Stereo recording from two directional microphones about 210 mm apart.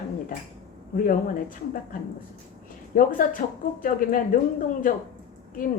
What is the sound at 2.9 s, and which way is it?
Speech, 40° left (ahead or behind).